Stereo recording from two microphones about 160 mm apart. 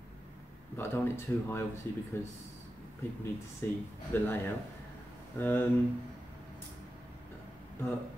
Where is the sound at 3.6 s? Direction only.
15° left (ahead or behind).